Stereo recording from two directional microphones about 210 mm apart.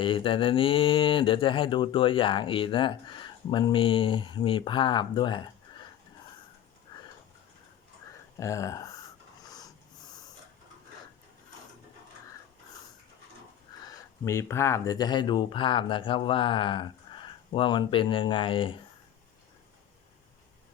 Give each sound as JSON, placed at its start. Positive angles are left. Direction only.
{"t": 0.0, "sound": "speech", "side_deg": 25}
{"t": 6.9, "sound": "a sound", "side_deg": 20}
{"t": 8.4, "sound": "speech", "side_deg": 15}
{"t": 14.3, "sound": "speech", "side_deg": 10}